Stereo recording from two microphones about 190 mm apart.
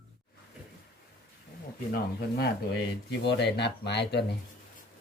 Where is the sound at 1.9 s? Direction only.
50° left (ahead or behind).